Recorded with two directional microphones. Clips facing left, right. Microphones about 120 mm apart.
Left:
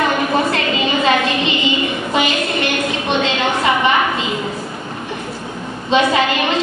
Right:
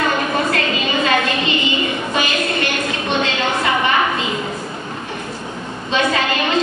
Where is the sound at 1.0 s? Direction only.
25° left (ahead or behind).